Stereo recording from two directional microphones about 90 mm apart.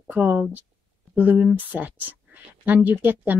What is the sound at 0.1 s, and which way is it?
Speech, 20° right (ahead or behind).